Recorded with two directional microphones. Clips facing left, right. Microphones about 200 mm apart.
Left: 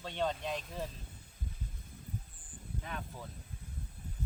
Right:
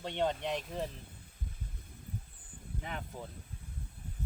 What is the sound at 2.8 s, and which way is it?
Speech, 20° right (ahead or behind).